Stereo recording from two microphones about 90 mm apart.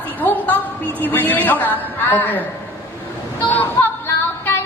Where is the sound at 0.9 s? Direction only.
20° left (ahead or behind).